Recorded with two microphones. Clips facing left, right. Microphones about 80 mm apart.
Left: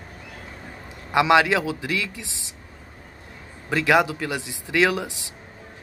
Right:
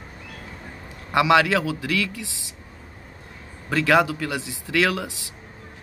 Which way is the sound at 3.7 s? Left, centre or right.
Centre.